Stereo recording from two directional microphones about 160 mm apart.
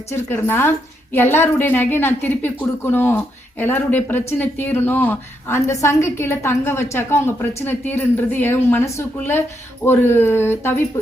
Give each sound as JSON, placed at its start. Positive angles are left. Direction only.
{"t": 0.1, "sound": "speech", "side_deg": 15}